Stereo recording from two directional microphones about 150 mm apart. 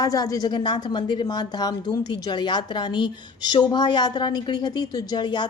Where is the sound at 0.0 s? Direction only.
25° left (ahead or behind).